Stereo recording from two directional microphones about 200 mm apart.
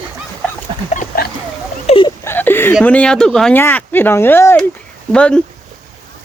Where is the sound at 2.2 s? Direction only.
10° left (ahead or behind).